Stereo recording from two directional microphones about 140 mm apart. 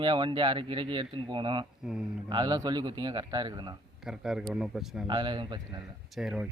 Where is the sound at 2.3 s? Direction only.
30° right (ahead or behind).